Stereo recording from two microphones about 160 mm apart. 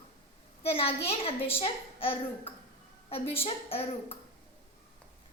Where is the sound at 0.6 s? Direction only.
40° left (ahead or behind).